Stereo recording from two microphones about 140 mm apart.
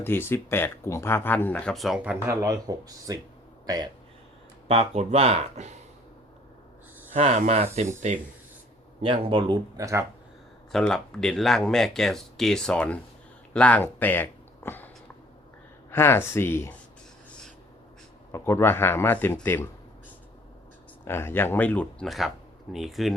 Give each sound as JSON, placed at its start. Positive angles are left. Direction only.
{"t": 0.0, "sound": "speech", "side_deg": 15}
{"t": 1.7, "sound": "speech", "side_deg": 0}
{"t": 2.2, "sound": "speech", "side_deg": -20}
{"t": 4.7, "sound": "speech", "side_deg": -45}
{"t": 7.1, "sound": "speech", "side_deg": -55}
{"t": 9.0, "sound": "speech", "side_deg": -40}
{"t": 9.7, "sound": "speech", "side_deg": -25}
{"t": 10.7, "sound": "speech", "side_deg": 5}
{"t": 15.9, "sound": "speech", "side_deg": 15}
{"t": 18.3, "sound": "speech", "side_deg": 20}
{"t": 21.0, "sound": "speech", "side_deg": 15}